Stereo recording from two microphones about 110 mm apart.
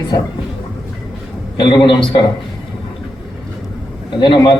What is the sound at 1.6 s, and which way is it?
Speech, 45° left (ahead or behind).